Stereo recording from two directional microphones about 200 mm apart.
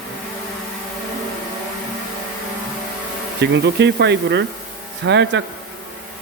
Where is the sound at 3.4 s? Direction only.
60° right (ahead or behind).